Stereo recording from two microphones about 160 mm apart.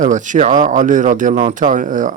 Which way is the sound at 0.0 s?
50° right (ahead or behind).